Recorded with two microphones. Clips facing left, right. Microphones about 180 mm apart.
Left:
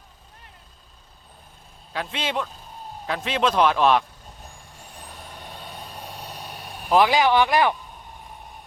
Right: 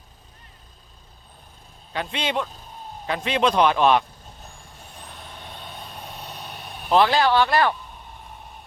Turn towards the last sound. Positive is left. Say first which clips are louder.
# even
turn(degrees=15)  # may be behind; listen again after turning